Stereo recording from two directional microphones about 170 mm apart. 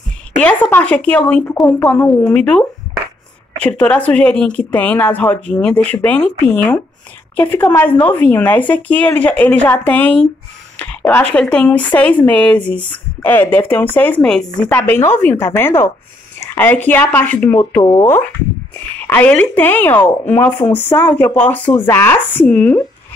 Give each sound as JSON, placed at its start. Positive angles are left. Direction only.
{"t": 0.4, "sound": "speech", "side_deg": 10}
{"t": 17.8, "sound": "speech", "side_deg": 20}
{"t": 18.9, "sound": "speech", "side_deg": 10}